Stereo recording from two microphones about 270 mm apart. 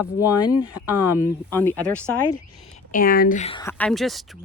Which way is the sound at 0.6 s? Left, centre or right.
Left.